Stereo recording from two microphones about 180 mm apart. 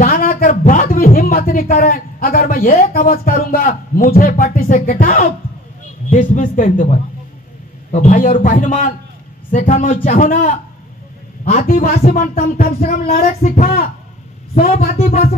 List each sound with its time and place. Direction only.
0.0 s speech: 50° left (ahead or behind)
11.6 s speech: 55° left (ahead or behind)
12.8 s speech: 40° left (ahead or behind)
13.2 s speech: 50° left (ahead or behind)
14.5 s a woman's voice: 40° left (ahead or behind)